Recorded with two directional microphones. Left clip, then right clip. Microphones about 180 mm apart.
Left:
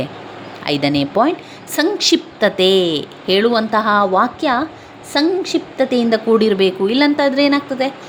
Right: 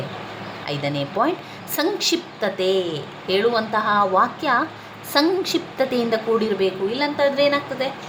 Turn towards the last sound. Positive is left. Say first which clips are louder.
# left 4 dB
turn(degrees=35)  # may be behind; listen again after turning